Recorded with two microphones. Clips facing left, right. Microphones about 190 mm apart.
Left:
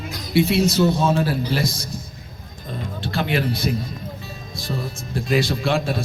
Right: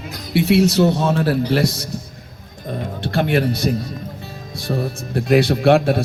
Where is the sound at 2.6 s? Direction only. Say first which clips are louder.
Right 4 dB; 60° right (ahead or behind).